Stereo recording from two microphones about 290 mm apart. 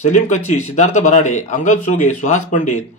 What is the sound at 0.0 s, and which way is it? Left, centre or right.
Speech, left.